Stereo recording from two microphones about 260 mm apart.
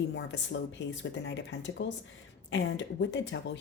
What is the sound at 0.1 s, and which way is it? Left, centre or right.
A woman's voice, left.